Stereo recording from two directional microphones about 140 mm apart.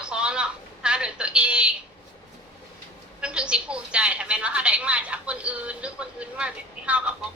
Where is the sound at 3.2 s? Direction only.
5° right (ahead or behind).